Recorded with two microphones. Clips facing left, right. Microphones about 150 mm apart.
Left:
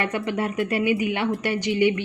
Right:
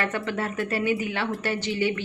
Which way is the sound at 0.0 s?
15° left (ahead or behind).